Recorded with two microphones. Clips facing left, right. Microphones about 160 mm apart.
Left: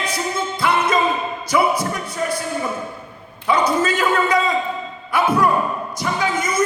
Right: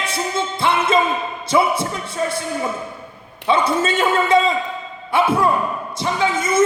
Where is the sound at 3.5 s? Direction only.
25° right (ahead or behind).